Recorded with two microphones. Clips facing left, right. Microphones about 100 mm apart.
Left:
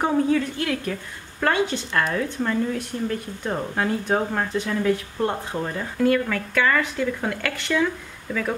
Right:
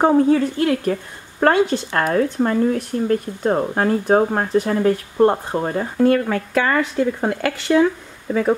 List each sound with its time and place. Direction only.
0.0 s speech: 35° right (ahead or behind)